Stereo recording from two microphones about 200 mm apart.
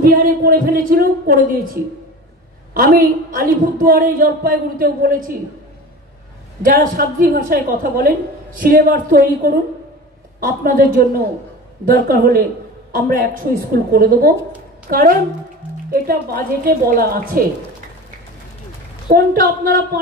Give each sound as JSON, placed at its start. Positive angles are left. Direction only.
{"t": 0.0, "sound": "a woman's voice", "side_deg": -45}
{"t": 2.7, "sound": "a woman's voice", "side_deg": -45}
{"t": 6.6, "sound": "a woman's voice", "side_deg": -45}
{"t": 19.0, "sound": "a woman's voice", "side_deg": -45}